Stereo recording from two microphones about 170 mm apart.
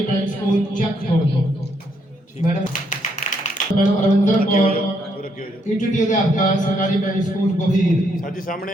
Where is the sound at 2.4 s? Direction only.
50° left (ahead or behind).